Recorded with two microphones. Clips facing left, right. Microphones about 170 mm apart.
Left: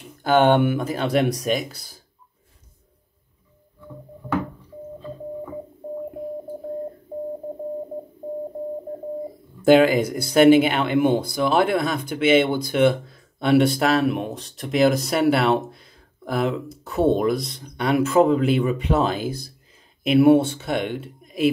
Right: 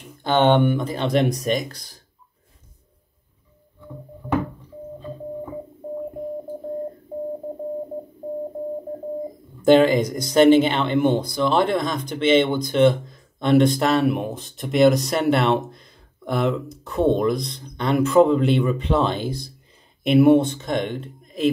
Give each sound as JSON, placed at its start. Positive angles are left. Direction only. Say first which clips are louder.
{"t": 0.2, "sound": "speech", "louder": "left 1 dB", "side_deg": 10}
{"t": 9.7, "sound": "speech", "louder": "even", "side_deg": 10}